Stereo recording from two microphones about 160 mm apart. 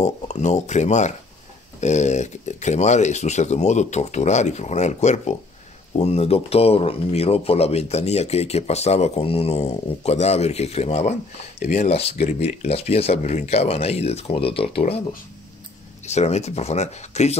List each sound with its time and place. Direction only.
0.0 s speech: 45° left (ahead or behind)